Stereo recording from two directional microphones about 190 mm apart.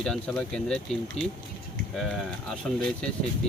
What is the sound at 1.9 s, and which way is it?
Speech, centre (ahead or behind).